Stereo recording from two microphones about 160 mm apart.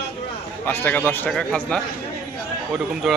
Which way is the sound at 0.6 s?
15° left (ahead or behind).